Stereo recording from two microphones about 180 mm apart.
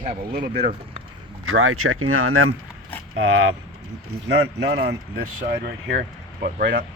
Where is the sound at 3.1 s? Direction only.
90° right.